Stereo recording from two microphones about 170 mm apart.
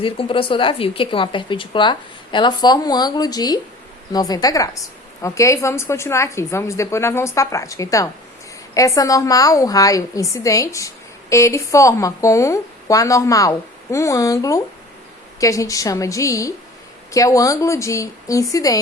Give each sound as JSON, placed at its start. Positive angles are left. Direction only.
{"t": 0.0, "sound": "a woman's voice", "side_deg": 30}